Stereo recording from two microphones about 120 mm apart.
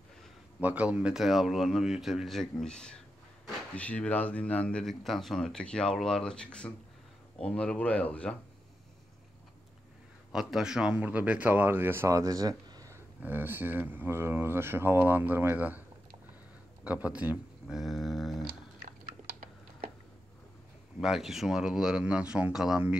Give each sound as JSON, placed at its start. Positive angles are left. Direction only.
{"t": 0.6, "sound": "a man's voice", "side_deg": -10}
{"t": 10.3, "sound": "speech", "side_deg": -5}
{"t": 13.2, "sound": "speech", "side_deg": -15}
{"t": 16.8, "sound": "a sound", "side_deg": -10}
{"t": 21.0, "sound": "a man's voice", "side_deg": 0}